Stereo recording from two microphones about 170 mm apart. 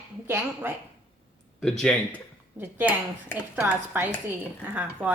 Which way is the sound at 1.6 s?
5° left (ahead or behind).